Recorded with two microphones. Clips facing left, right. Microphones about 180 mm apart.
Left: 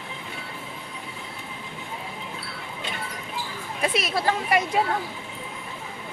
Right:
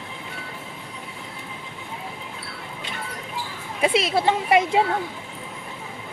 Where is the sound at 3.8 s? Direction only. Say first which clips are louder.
Right 5 dB; 25° right (ahead or behind).